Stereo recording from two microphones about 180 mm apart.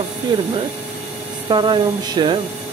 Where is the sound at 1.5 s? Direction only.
25° right (ahead or behind).